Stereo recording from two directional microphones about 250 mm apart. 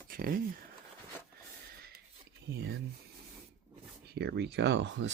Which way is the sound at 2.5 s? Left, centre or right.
Right.